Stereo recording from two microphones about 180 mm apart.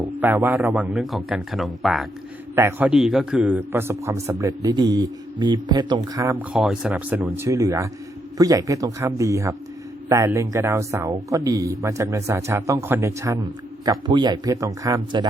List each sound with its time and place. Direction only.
0.0 s speech: 10° right (ahead or behind)
2.6 s a man's voice: 10° right (ahead or behind)
6.5 s a man's voice: 5° right (ahead or behind); by 15.3 s 20° right (ahead or behind)